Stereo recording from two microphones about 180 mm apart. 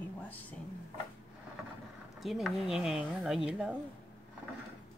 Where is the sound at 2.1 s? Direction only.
Centre (ahead or behind).